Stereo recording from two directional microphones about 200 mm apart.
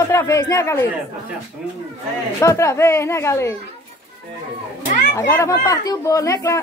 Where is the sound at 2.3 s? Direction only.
15° left (ahead or behind).